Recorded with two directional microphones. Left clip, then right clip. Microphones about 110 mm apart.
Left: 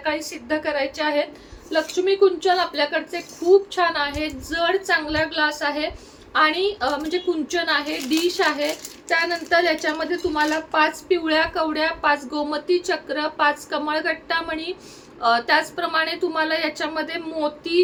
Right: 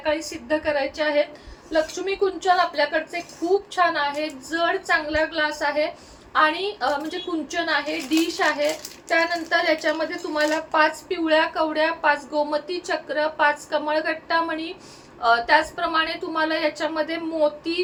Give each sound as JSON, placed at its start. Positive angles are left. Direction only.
{"t": 0.0, "sound": "a woman's voice", "side_deg": 45}